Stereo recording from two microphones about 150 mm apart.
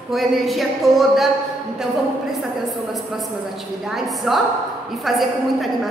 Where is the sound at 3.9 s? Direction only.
Centre (ahead or behind).